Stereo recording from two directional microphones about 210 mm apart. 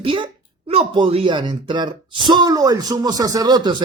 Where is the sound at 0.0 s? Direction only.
25° right (ahead or behind).